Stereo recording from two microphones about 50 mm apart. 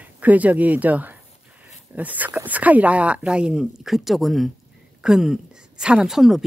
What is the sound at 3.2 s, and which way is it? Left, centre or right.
Speech, centre.